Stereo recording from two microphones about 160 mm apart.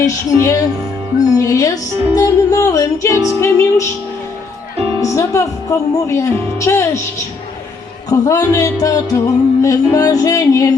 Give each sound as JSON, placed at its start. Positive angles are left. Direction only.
{"t": 0.0, "sound": "music", "side_deg": 20}
{"t": 4.9, "sound": "speech", "side_deg": 20}
{"t": 8.1, "sound": "music", "side_deg": 20}